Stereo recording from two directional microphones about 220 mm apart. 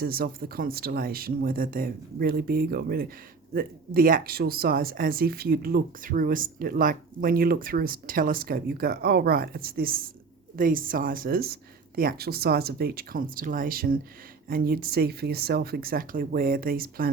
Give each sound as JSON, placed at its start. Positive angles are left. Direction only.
{"t": 0.0, "sound": "speech", "side_deg": -40}